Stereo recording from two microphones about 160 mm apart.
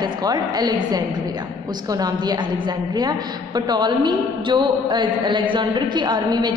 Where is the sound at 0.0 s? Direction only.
25° right (ahead or behind).